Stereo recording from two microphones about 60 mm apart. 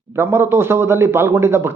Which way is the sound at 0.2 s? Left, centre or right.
Right.